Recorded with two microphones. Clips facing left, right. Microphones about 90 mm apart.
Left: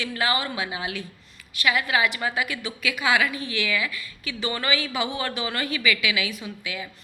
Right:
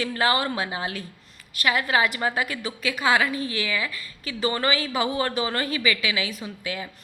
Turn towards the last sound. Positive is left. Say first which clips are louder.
# right 2 dB
turn(degrees=-35)  # may be behind; listen again after turning